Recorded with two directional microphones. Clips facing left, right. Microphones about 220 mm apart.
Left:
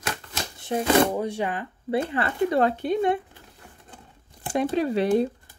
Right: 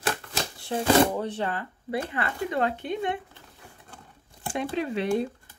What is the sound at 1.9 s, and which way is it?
Speech, 25° left (ahead or behind).